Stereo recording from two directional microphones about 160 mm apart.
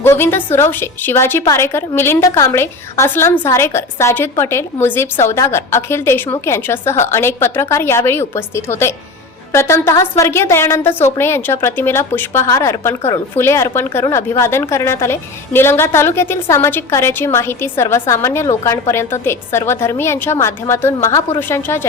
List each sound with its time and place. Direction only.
0.0 s a woman's voice: 15° left (ahead or behind)